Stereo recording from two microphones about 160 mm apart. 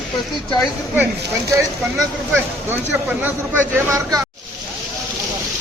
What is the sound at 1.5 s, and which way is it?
Speech, 15° right (ahead or behind).